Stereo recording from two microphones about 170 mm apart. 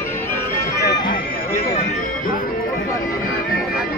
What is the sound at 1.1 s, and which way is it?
Music, 50° left (ahead or behind).